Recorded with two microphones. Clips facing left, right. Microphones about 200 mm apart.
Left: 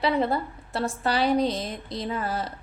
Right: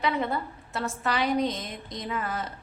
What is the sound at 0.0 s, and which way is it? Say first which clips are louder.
A woman's voice: left 4 dB; 35° left (ahead or behind).